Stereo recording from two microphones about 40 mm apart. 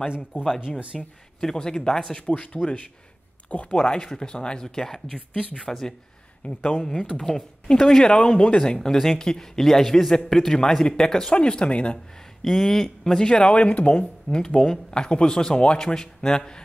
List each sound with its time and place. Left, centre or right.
0.1 s speech: centre
0.9 s speech: centre
1.4 s a man's voice: centre
2.2 s speech: left
3.7 s a man's voice: left
5.3 s speech: left
5.7 s a man's voice: centre
6.4 s speech: left
7.2 s a man's voice: centre
9.6 s a man's voice: centre
11.3 s speech: left
12.4 s a man's voice: centre
13.3 s speech: left